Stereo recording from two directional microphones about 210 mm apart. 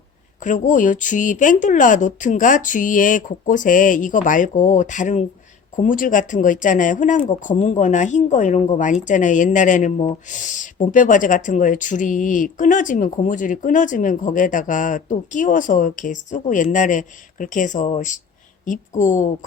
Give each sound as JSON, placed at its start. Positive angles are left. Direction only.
{"t": 0.4, "sound": "speech", "side_deg": 35}